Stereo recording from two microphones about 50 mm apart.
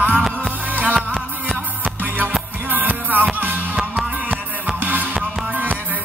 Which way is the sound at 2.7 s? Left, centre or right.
Right.